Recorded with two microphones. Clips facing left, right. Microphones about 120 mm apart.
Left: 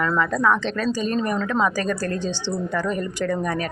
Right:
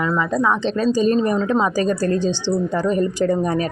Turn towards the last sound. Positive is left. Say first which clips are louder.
# right 5 dB
turn(degrees=-25)  # may be behind; listen again after turning